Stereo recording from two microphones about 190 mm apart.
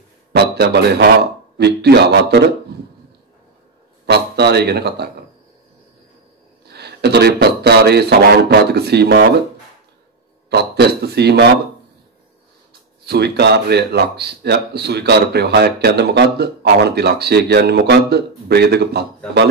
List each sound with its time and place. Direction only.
0.3 s speech: 60° right (ahead or behind)
4.0 s speech: 60° right (ahead or behind)
6.6 s speech: 60° right (ahead or behind)
10.5 s speech: 60° right (ahead or behind)
13.0 s speech: 60° right (ahead or behind)